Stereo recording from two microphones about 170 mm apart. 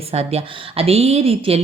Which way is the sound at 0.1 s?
35° right (ahead or behind).